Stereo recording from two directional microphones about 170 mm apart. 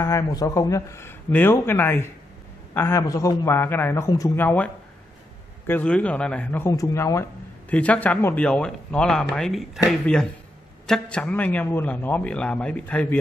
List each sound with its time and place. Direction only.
0.0 s a man's voice: 15° left (ahead or behind)
5.7 s a man's voice: 10° left (ahead or behind)
10.9 s a man's voice: 5° left (ahead or behind)